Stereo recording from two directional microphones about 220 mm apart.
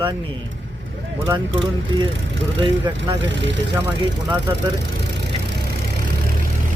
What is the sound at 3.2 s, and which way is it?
Speech, 55° right (ahead or behind).